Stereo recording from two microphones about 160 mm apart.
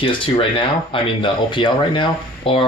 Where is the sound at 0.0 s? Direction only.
30° left (ahead or behind).